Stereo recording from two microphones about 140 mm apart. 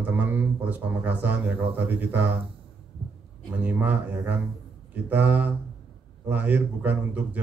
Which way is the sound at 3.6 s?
10° right (ahead or behind).